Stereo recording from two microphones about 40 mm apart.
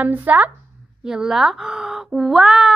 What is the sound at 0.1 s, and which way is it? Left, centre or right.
Speech, right.